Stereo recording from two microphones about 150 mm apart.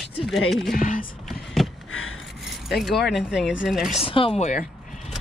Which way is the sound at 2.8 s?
Centre (ahead or behind).